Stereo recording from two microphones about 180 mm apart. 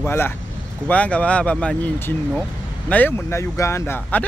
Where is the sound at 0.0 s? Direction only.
10° left (ahead or behind).